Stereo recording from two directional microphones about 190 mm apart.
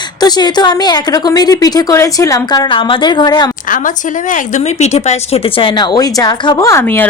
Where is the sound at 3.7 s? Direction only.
45° left (ahead or behind).